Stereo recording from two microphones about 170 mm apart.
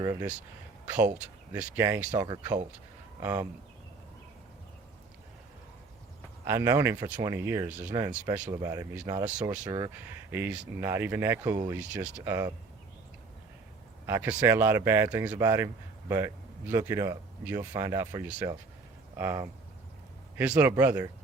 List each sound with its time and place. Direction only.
0.0 s speech: 20° right (ahead or behind)
0.9 s speech: 10° right (ahead or behind)
2.1 s speech: 25° right (ahead or behind)
6.4 s speech: 15° right (ahead or behind)
10.3 s speech: 10° right (ahead or behind)
12.3 s speech: 20° right (ahead or behind)
14.1 s speech: 10° right (ahead or behind)
20.6 s speech: 10° right (ahead or behind)